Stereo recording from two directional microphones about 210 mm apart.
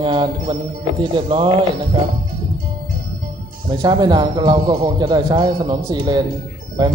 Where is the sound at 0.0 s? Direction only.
25° right (ahead or behind).